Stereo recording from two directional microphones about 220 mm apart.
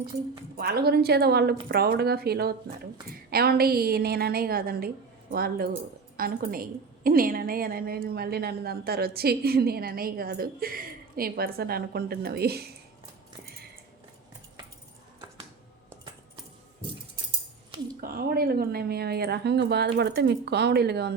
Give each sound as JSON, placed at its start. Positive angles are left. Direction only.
{"t": 0.5, "sound": "a woman's voice", "side_deg": -45}
{"t": 18.0, "sound": "a woman's voice", "side_deg": -45}